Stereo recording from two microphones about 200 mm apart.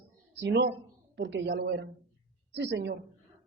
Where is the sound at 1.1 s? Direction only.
60° right (ahead or behind).